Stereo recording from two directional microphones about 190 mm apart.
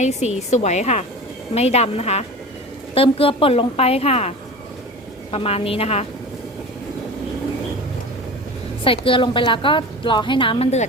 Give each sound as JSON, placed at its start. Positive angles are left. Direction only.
{"t": 0.0, "sound": "a woman's voice", "side_deg": 35}
{"t": 8.8, "sound": "a woman's voice", "side_deg": 30}